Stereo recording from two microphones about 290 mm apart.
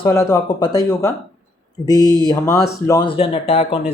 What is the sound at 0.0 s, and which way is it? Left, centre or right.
Speech, centre.